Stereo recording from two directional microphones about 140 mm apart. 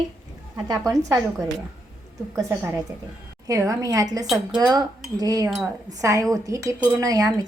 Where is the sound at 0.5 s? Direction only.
25° right (ahead or behind).